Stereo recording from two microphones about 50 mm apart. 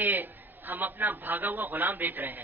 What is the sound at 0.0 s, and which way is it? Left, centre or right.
A man's voice, right.